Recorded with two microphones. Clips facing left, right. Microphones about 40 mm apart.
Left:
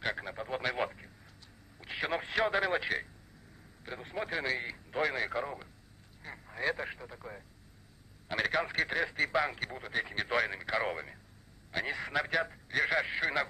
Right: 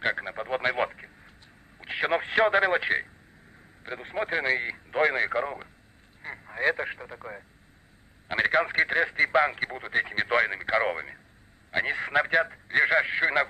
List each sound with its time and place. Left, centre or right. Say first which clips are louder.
0.0 s radio: right 7 dB; right
1.8 s a sound: right 8 dB; right
3.8 s speech: right 7 dB; right